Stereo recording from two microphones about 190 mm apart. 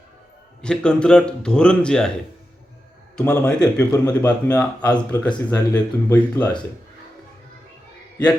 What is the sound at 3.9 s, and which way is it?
Speech, 15° left (ahead or behind).